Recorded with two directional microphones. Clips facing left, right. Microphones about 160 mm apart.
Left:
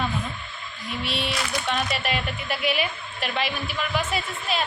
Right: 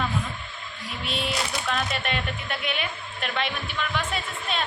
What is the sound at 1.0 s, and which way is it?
Speech, centre (ahead or behind).